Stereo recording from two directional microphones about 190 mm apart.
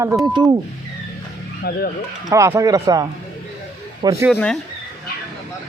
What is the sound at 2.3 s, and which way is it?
Speech, 15° right (ahead or behind).